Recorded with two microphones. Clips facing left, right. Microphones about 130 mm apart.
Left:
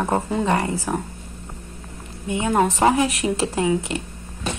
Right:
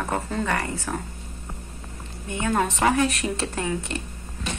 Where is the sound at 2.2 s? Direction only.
20° left (ahead or behind).